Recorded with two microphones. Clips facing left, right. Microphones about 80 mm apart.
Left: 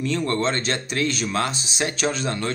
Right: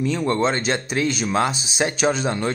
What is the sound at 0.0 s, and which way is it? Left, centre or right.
Speech, centre.